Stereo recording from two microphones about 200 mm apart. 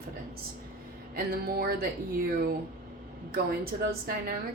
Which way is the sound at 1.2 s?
50° right (ahead or behind).